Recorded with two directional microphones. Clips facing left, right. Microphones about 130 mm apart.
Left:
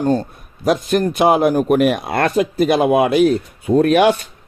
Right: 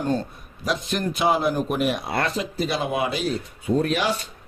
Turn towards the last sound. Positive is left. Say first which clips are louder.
# left 9 dB
turn(degrees=60)  # may be behind; listen again after turning